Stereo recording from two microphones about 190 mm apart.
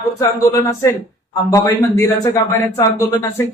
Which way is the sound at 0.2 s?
15° left (ahead or behind).